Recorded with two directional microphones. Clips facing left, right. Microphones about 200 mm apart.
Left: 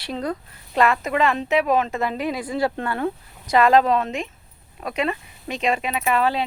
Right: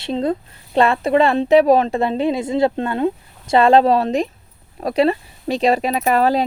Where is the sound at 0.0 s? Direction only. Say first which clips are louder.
Right 7 dB; 25° right (ahead or behind).